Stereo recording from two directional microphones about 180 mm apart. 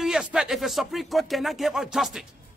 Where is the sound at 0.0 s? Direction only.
5° right (ahead or behind).